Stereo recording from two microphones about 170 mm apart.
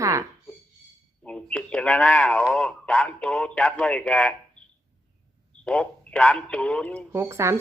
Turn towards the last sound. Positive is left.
turn(degrees=-15)  # may be behind; listen again after turning